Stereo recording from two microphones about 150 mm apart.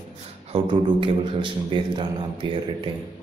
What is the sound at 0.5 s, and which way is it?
A man's voice, 35° right (ahead or behind).